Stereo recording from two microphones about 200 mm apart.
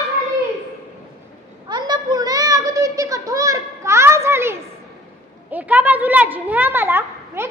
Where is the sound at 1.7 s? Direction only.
20° right (ahead or behind).